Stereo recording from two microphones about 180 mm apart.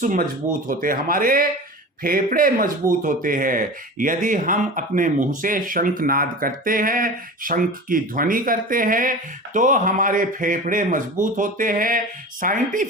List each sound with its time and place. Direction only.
0.0 s speech: 45° right (ahead or behind)